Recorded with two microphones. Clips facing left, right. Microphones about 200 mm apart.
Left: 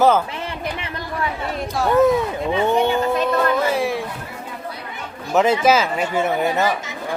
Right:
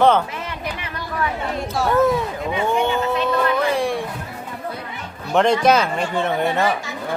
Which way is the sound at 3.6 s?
5° left (ahead or behind).